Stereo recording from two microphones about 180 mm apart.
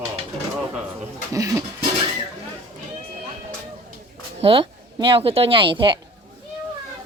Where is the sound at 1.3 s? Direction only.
20° right (ahead or behind).